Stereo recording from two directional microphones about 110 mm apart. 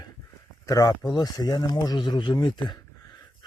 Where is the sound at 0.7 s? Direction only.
35° left (ahead or behind).